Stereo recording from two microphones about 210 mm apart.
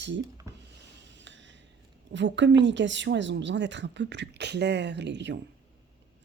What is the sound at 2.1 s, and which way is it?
Speech, 60° right (ahead or behind).